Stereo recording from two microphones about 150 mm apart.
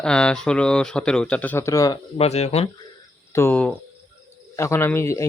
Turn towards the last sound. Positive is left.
turn(degrees=20)  # may be behind; listen again after turning